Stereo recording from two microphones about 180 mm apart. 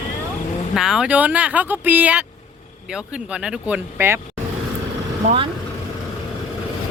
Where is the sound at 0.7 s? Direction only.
Centre (ahead or behind).